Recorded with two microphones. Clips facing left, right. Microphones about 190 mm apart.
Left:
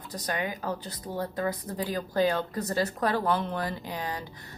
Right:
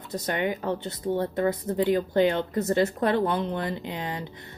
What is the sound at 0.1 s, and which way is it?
Speech, 25° right (ahead or behind).